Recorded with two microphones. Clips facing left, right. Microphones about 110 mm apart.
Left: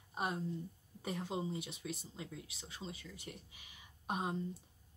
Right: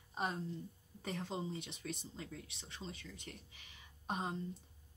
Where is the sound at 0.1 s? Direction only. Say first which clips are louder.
Left 1 dB; 10° left (ahead or behind).